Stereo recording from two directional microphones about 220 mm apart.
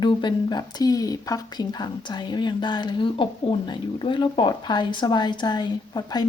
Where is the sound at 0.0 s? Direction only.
20° left (ahead or behind).